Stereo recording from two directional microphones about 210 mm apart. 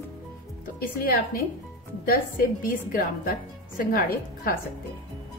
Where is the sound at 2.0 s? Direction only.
45° left (ahead or behind).